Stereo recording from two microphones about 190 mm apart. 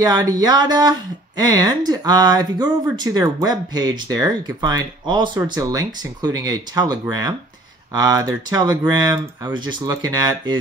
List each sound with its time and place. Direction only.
0.0 s speech: 20° right (ahead or behind)